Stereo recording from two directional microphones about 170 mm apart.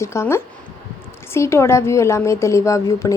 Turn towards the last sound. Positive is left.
turn(degrees=20)  # may be behind; listen again after turning